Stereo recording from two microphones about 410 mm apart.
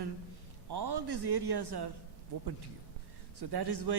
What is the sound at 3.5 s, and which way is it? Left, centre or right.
Speech, right.